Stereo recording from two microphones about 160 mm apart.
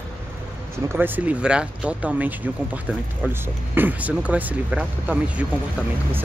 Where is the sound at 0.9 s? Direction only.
10° right (ahead or behind).